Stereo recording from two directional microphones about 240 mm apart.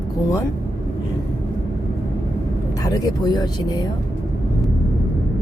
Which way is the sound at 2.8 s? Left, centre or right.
Centre.